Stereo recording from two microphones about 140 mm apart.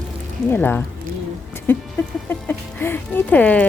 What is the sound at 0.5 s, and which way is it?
Speech, 15° left (ahead or behind).